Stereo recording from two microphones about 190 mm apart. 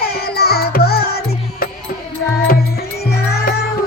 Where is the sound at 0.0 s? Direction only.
55° left (ahead or behind).